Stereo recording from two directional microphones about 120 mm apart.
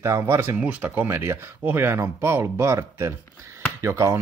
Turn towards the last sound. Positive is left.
turn(degrees=-25)  # may be behind; listen again after turning